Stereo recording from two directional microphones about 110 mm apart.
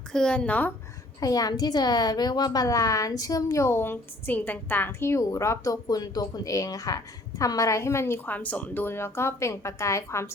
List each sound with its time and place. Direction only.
0.1 s speech: 10° left (ahead or behind)
1.2 s a woman's voice: 35° left (ahead or behind)